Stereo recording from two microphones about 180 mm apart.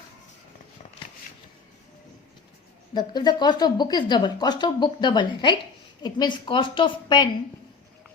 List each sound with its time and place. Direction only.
2.9 s speech: 25° left (ahead or behind)